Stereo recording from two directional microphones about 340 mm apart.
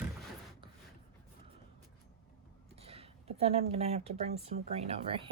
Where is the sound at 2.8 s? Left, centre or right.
Centre.